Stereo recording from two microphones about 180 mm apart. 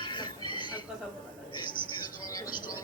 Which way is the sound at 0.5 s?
25° left (ahead or behind).